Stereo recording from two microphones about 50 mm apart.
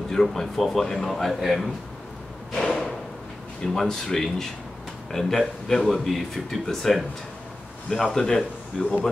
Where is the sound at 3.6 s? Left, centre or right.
Centre.